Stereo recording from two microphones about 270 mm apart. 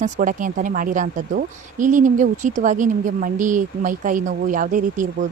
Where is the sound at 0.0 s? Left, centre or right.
Right.